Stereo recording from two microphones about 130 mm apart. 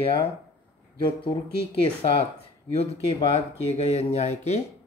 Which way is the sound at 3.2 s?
55° left (ahead or behind).